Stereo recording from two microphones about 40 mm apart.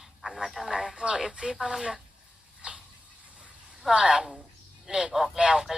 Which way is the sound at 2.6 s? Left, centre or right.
Right.